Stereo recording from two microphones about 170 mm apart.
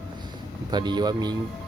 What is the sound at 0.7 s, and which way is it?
Speech, 25° right (ahead or behind).